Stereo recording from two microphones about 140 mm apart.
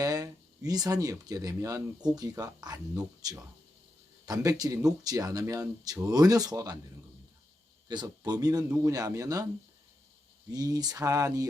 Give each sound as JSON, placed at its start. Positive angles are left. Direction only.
{"t": 0.0, "sound": "speech", "side_deg": -25}
{"t": 7.9, "sound": "speech", "side_deg": -30}
{"t": 10.5, "sound": "speech", "side_deg": -25}